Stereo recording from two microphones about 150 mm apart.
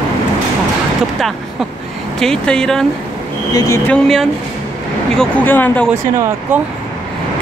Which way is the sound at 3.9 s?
5° left (ahead or behind).